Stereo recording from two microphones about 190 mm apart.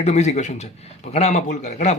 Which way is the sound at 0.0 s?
35° left (ahead or behind).